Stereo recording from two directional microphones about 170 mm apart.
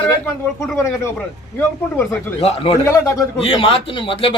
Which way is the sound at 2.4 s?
35° left (ahead or behind).